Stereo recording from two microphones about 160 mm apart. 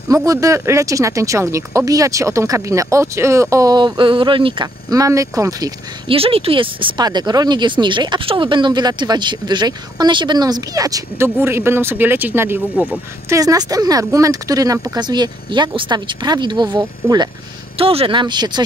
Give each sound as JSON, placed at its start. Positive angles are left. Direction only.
{"t": 0.1, "sound": "speech", "side_deg": -20}
{"t": 6.0, "sound": "speech", "side_deg": -35}
{"t": 13.4, "sound": "speech", "side_deg": -20}
{"t": 17.7, "sound": "speech", "side_deg": -35}